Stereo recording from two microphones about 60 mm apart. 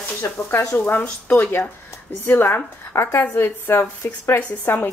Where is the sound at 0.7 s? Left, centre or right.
Left.